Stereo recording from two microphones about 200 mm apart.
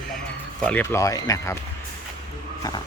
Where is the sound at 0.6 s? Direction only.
5° left (ahead or behind).